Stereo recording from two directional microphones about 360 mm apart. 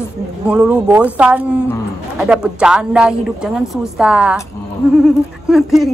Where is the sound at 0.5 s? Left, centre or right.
Centre.